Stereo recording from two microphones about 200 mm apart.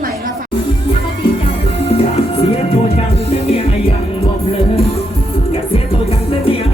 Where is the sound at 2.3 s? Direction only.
30° left (ahead or behind).